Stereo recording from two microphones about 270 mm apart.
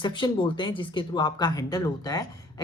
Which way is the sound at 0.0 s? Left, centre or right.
Centre.